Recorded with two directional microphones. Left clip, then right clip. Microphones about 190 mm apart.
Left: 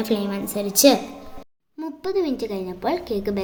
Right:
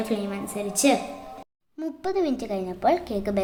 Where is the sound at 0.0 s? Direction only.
20° left (ahead or behind).